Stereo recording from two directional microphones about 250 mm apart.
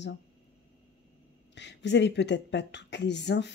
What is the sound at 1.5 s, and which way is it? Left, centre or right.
Speech, left.